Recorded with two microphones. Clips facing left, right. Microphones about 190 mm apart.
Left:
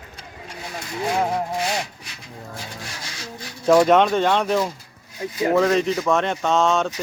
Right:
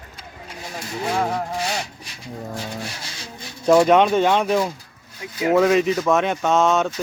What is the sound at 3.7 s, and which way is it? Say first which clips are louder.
Speech: right 1 dB; centre (ahead or behind).